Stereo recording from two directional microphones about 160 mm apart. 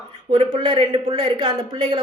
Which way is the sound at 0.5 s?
35° right (ahead or behind).